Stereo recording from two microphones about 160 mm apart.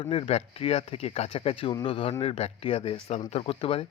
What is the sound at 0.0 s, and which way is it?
Speech, 35° left (ahead or behind).